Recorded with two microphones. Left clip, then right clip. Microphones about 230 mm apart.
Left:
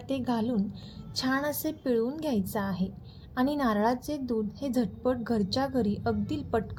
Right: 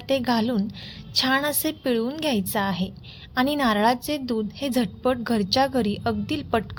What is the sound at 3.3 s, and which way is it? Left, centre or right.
Speech, right.